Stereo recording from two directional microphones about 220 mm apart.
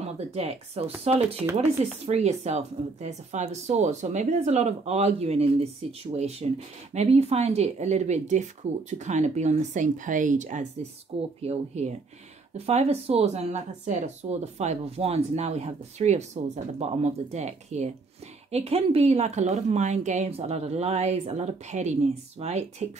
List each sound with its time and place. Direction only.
0.0 s speech: 30° right (ahead or behind)